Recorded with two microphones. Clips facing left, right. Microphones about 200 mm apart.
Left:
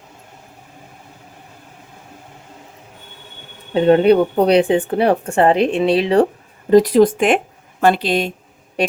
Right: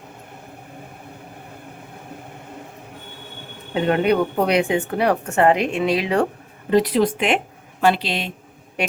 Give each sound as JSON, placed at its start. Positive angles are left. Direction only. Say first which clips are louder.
{"t": 3.8, "sound": "a woman's voice", "louder": "left 7 dB", "side_deg": 30}
{"t": 6.7, "sound": "speech", "louder": "left 6 dB", "side_deg": 40}
{"t": 8.8, "sound": "a sound", "louder": "left 6 dB", "side_deg": 35}